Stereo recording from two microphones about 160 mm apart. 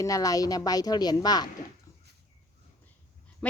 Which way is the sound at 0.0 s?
20° left (ahead or behind).